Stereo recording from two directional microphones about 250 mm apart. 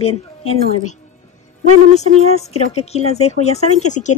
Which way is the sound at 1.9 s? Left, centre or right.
Left.